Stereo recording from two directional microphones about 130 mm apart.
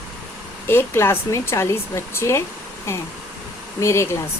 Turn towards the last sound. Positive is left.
turn(degrees=20)  # may be behind; listen again after turning